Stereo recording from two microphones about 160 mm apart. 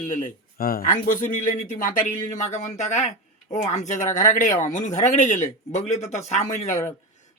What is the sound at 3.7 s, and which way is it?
Speech, 50° left (ahead or behind).